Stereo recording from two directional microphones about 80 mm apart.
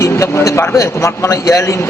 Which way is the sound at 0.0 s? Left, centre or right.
Left.